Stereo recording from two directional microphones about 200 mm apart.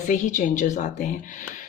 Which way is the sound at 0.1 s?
40° left (ahead or behind).